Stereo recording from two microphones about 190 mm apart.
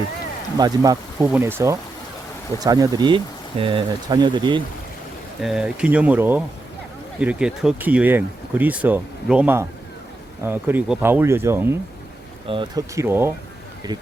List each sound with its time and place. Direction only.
0.5 s speech: 20° right (ahead or behind)
5.4 s speech: centre (ahead or behind)
12.5 s speech: 25° right (ahead or behind)
12.9 s speech: 15° right (ahead or behind)